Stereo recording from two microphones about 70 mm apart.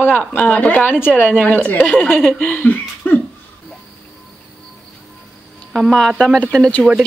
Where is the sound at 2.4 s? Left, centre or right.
Left.